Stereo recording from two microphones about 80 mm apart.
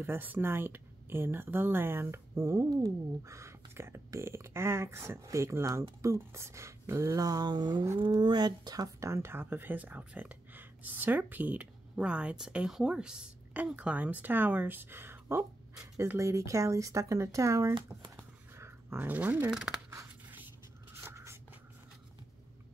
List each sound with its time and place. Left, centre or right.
0.0 s a woman's voice: right
18.6 s speech: right
21.0 s writing: right